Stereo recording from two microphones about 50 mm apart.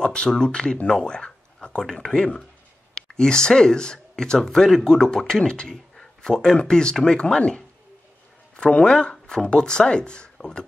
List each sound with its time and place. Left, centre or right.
0.0 s speech: centre